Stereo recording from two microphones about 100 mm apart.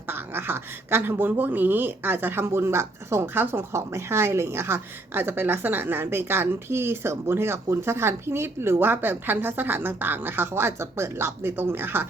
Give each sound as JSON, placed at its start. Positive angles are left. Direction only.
{"t": 0.1, "sound": "speech", "side_deg": -20}